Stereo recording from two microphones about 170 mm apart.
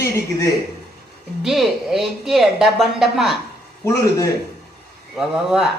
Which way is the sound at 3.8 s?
15° left (ahead or behind).